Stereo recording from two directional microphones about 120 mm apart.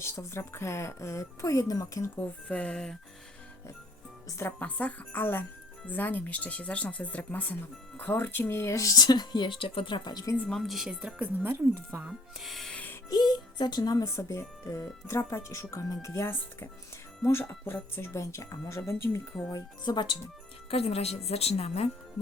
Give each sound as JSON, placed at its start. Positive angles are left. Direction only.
{"t": 0.0, "sound": "speech", "side_deg": 25}
{"t": 2.5, "sound": "speech", "side_deg": 10}
{"t": 4.3, "sound": "speech", "side_deg": 20}
{"t": 4.6, "sound": "speech", "side_deg": 10}
{"t": 10.3, "sound": "speech", "side_deg": 10}
{"t": 10.6, "sound": "speech", "side_deg": 0}
{"t": 12.0, "sound": "speech", "side_deg": 0}
{"t": 13.1, "sound": "speech", "side_deg": 35}
{"t": 19.5, "sound": "speech", "side_deg": 35}
{"t": 20.7, "sound": "speech", "side_deg": 55}